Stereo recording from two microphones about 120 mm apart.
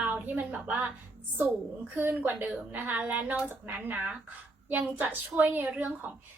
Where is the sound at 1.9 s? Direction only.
15° right (ahead or behind).